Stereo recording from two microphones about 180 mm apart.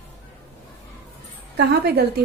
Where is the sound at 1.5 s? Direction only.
65° right (ahead or behind).